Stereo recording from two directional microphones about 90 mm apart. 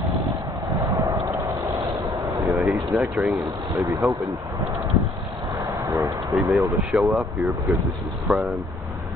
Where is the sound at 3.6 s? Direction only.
40° right (ahead or behind).